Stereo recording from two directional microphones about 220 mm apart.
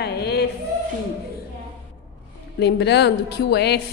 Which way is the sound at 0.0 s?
45° left (ahead or behind).